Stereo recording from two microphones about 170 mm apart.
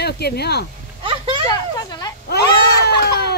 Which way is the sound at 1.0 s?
30° right (ahead or behind).